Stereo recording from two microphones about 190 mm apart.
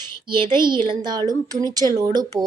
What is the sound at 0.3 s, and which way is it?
Speech, 25° right (ahead or behind).